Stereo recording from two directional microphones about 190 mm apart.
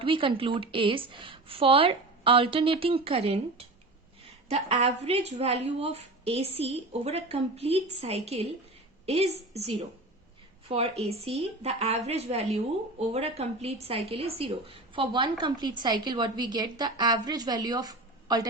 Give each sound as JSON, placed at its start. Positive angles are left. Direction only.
{"t": 0.0, "sound": "a woman's voice", "side_deg": -25}